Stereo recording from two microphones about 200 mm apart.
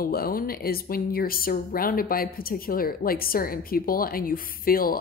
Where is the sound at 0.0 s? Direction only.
45° left (ahead or behind).